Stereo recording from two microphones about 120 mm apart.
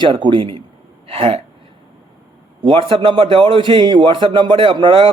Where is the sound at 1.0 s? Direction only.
55° right (ahead or behind).